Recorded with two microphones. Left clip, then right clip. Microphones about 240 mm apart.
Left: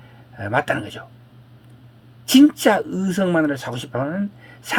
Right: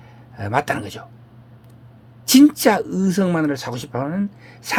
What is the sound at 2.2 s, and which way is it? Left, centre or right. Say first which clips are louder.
Speech: right 1 dB; right.